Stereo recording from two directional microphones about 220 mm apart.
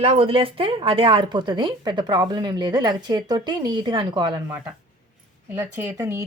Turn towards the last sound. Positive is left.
turn(degrees=-10)  # may be behind; listen again after turning